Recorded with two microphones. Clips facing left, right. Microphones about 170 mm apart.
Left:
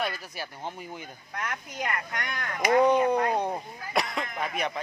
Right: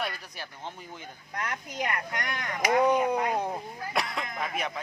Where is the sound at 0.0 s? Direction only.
5° left (ahead or behind).